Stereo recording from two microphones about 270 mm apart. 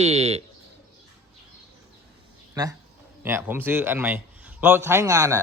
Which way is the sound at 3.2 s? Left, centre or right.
Centre.